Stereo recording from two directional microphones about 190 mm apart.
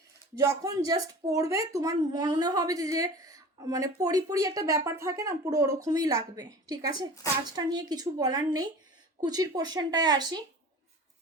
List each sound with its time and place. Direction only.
0.3 s speech: 20° right (ahead or behind)